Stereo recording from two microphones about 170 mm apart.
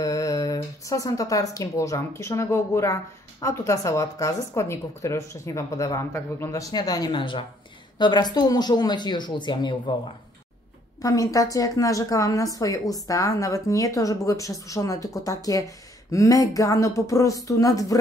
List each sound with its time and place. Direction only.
0.0 s speech: 20° left (ahead or behind)
11.0 s speech: 20° left (ahead or behind)